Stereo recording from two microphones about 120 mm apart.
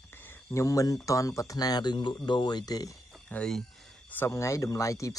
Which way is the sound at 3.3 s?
5° left (ahead or behind).